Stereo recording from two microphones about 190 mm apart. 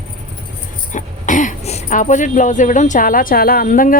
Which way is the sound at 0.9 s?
40° left (ahead or behind).